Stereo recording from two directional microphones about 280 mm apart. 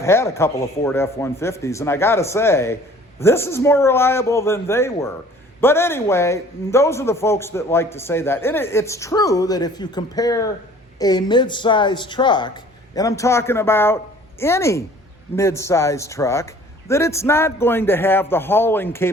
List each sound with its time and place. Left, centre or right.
0.0 s a man's voice: centre